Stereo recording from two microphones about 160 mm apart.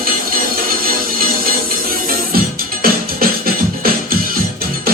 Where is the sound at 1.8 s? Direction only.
65° right (ahead or behind).